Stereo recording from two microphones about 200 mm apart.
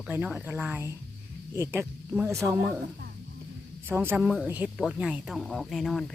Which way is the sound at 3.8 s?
10° right (ahead or behind).